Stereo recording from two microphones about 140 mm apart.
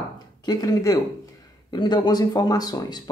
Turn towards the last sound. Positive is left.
turn(degrees=30)  # may be behind; listen again after turning